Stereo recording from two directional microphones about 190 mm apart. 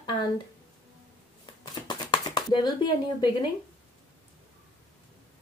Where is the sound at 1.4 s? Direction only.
25° left (ahead or behind).